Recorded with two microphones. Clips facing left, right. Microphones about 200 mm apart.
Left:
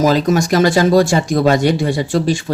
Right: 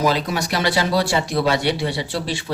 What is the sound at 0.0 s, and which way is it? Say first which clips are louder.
Speech: left 7 dB; 45° left (ahead or behind).